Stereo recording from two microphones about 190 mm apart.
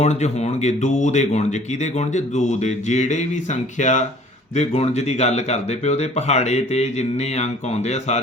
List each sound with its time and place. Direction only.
0.0 s speech: 35° left (ahead or behind)